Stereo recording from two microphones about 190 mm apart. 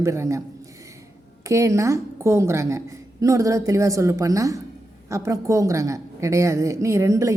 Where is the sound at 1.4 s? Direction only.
15° right (ahead or behind).